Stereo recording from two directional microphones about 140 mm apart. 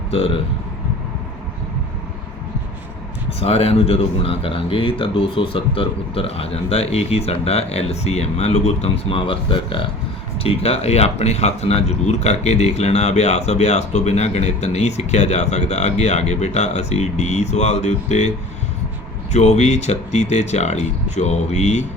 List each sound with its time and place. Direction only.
0.1 s speech: 45° left (ahead or behind)
3.4 s speech: 45° left (ahead or behind)
19.3 s speech: 55° left (ahead or behind)